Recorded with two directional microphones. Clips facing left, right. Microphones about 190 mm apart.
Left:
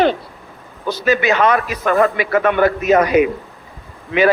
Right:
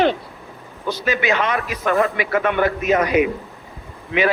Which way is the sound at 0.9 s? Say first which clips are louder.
Left 4 dB; 40° left (ahead or behind).